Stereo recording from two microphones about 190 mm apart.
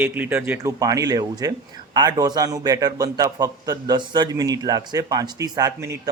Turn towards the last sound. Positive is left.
turn(degrees=-15)  # may be behind; listen again after turning